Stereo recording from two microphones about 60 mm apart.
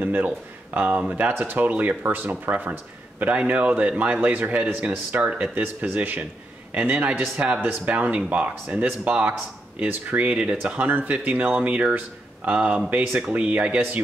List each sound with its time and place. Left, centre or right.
0.0 s speech: right